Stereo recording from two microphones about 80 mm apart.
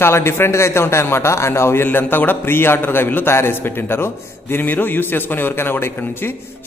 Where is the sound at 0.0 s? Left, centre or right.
Left.